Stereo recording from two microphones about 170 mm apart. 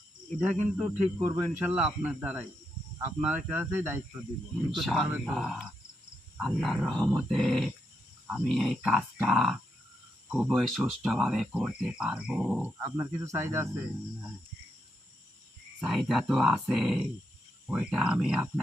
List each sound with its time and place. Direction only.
0.3 s speech: 5° right (ahead or behind)
4.8 s speech: centre (ahead or behind)
5.0 s speech: 10° right (ahead or behind)
5.3 s speech: centre (ahead or behind)
12.8 s speech: 15° right (ahead or behind)
15.8 s speech: centre (ahead or behind)